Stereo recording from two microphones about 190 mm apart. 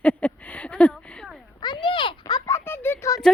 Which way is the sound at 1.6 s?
25° left (ahead or behind).